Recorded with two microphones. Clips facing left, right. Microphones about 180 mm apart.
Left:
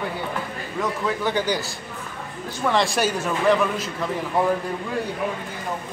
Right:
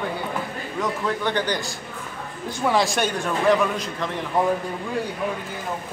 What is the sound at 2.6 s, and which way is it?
A man's voice, centre (ahead or behind).